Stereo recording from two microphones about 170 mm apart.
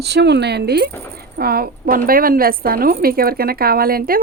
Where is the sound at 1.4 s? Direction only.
60° right (ahead or behind).